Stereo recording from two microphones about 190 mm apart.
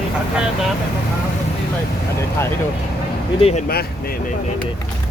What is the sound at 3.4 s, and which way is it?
Speech, 35° left (ahead or behind).